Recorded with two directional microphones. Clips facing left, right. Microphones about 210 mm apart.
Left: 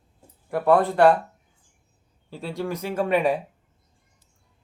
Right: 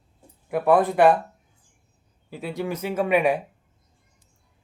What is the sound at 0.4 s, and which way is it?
Speech, 15° right (ahead or behind).